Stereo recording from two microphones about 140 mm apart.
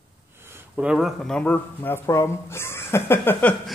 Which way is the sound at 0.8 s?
5° right (ahead or behind).